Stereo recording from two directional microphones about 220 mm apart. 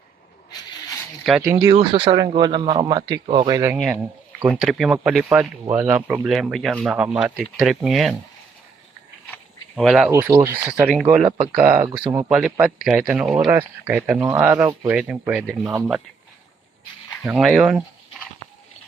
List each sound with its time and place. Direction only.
1.7 s speech: 20° right (ahead or behind)
3.8 s speech: centre (ahead or behind)
9.3 s a sound: 5° left (ahead or behind)
10.1 s speech: 10° right (ahead or behind)
11.2 s speech: 25° right (ahead or behind)
11.7 s speech: 15° right (ahead or behind)
12.5 s speech: 5° right (ahead or behind)
17.2 s speech: 5° right (ahead or behind)